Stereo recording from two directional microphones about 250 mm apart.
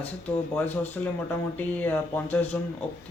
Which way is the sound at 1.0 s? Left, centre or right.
Centre.